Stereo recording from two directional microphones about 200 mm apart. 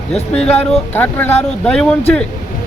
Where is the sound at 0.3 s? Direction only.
30° left (ahead or behind).